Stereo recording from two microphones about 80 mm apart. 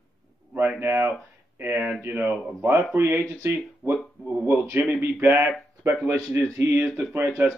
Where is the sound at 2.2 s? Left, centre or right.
Right.